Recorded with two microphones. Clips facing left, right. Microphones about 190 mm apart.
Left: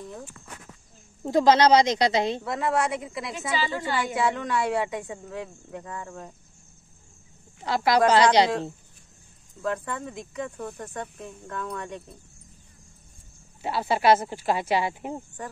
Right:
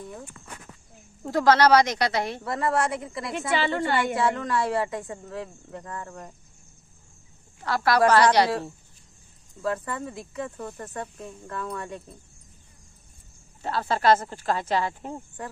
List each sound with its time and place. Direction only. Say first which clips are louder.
1.2 s speech: left 1 dB; 20° left (ahead or behind)
2.4 s speech: even; centre (ahead or behind)
3.5 s a woman's voice: right 4 dB; 60° right (ahead or behind)
4.0 s speech: right 1 dB; centre (ahead or behind)
7.6 s speech: even; 15° left (ahead or behind)
9.6 s speech: right 1 dB; 5° right (ahead or behind)
13.6 s speech: left 1 dB; 10° left (ahead or behind)